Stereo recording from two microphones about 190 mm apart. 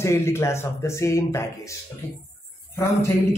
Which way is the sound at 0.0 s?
15° left (ahead or behind).